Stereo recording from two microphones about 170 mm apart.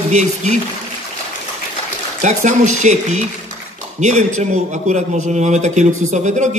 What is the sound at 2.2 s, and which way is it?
A man's voice, 45° right (ahead or behind).